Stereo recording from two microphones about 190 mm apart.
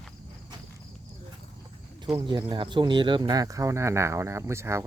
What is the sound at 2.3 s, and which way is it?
Speech, 25° right (ahead or behind).